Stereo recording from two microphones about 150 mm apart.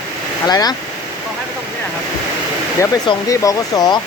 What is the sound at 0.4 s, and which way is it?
Speech, 25° left (ahead or behind).